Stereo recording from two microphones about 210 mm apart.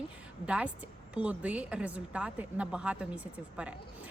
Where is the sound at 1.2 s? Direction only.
5° right (ahead or behind).